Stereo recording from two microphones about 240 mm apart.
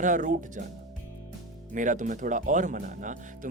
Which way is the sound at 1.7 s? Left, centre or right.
Right.